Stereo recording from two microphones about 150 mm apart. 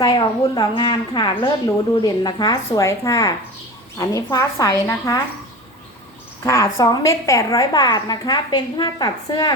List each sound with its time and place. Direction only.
0.0 s a woman's voice: 30° left (ahead or behind)
6.4 s a woman's voice: 20° left (ahead or behind)